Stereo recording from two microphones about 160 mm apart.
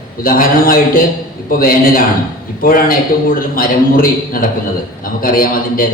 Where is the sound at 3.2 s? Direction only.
65° left (ahead or behind).